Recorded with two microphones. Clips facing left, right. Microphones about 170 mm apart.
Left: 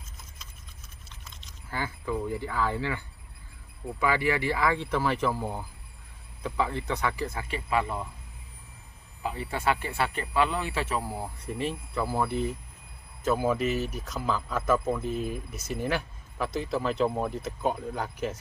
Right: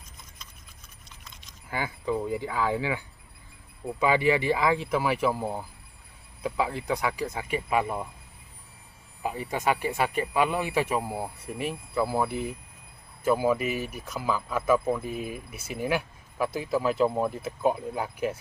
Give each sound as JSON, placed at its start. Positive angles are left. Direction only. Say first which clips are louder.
{"t": 1.4, "sound": "speech", "louder": "right 2 dB", "side_deg": -15}
{"t": 4.0, "sound": "speech", "louder": "right 3 dB", "side_deg": -20}
{"t": 9.2, "sound": "speech", "louder": "right 1 dB", "side_deg": -15}